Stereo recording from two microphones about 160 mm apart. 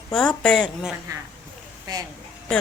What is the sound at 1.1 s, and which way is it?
Speech, 20° right (ahead or behind).